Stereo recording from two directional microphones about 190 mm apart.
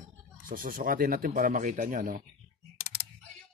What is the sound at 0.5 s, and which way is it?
Speech, 45° right (ahead or behind).